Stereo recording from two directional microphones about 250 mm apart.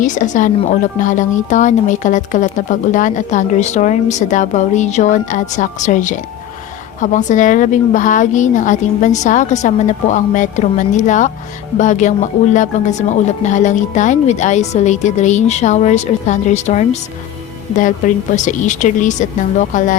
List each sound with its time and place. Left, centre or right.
0.0 s speech: left